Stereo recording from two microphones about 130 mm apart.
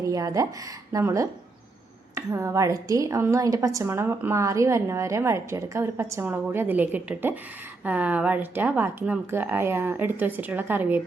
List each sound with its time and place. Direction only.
0.0 s a woman's voice: 25° right (ahead or behind)